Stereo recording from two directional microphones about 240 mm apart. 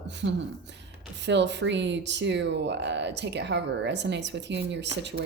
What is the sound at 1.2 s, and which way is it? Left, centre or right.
Speech, right.